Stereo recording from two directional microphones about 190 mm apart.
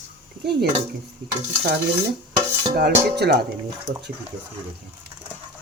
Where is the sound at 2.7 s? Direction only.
60° right (ahead or behind).